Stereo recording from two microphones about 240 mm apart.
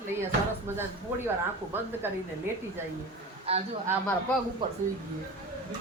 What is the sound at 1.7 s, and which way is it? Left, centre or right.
Speech, centre.